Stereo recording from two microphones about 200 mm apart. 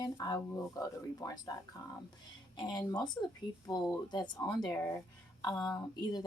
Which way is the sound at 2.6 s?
20° left (ahead or behind).